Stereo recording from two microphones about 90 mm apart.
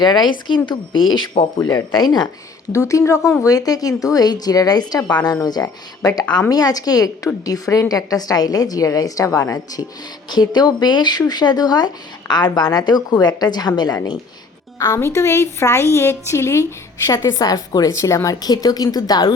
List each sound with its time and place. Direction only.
0.0 s speech: 55° left (ahead or behind)
1.6 s speech: 50° left (ahead or behind)
2.7 s a woman's voice: 35° left (ahead or behind)
10.2 s speech: 50° left (ahead or behind)
14.8 s a woman's voice: 35° left (ahead or behind)
17.3 s speech: 45° left (ahead or behind)